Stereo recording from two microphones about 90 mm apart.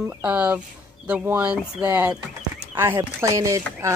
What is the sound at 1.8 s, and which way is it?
A woman's voice, 25° right (ahead or behind).